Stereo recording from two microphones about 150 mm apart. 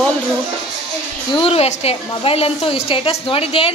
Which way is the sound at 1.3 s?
40° left (ahead or behind).